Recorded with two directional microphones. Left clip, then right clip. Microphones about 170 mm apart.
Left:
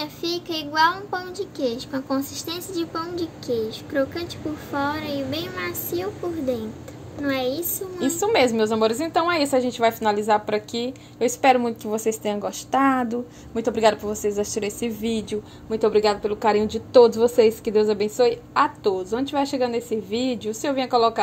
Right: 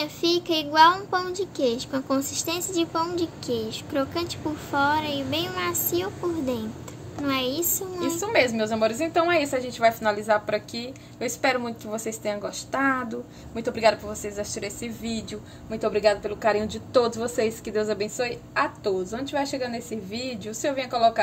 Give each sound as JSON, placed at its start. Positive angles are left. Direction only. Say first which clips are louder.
{"t": 0.0, "sound": "a child's voice", "louder": "right 3 dB", "side_deg": -15}
{"t": 7.2, "sound": "a child's voice", "louder": "left 1 dB", "side_deg": -20}
{"t": 8.2, "sound": "a woman's voice", "louder": "left 4 dB", "side_deg": 30}